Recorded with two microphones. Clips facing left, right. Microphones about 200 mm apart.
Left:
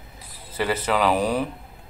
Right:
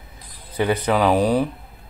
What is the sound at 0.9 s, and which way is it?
Speech, 15° right (ahead or behind).